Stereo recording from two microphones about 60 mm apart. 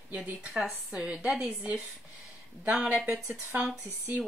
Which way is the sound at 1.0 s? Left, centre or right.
Centre.